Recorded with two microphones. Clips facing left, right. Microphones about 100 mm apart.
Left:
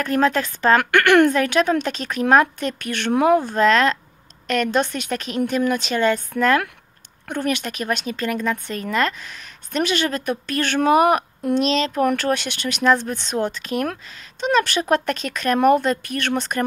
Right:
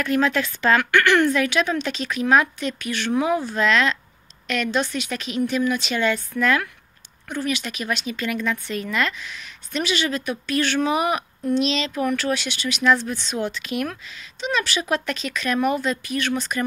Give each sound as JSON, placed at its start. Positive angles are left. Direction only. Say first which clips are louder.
{"t": 0.0, "sound": "speech", "louder": "left 2 dB", "side_deg": 40}